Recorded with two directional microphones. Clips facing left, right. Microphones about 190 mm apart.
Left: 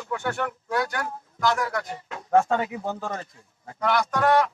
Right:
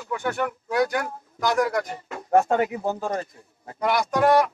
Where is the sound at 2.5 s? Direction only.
45° right (ahead or behind).